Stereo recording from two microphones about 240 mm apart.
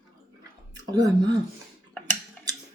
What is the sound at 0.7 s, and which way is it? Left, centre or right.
Speech, centre.